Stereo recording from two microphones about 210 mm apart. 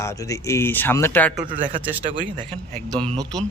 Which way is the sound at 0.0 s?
15° left (ahead or behind).